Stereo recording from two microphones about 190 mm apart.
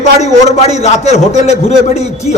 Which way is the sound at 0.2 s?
35° left (ahead or behind).